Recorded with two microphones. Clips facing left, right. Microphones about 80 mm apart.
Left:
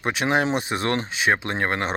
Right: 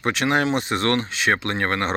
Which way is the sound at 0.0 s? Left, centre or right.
Centre.